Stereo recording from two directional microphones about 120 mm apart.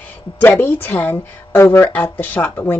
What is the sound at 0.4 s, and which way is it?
Speech, 15° left (ahead or behind).